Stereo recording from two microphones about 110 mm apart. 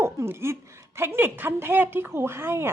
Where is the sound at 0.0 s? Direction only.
25° right (ahead or behind).